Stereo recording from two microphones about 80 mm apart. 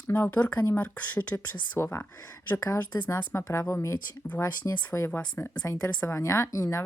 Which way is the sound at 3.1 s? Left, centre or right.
Left.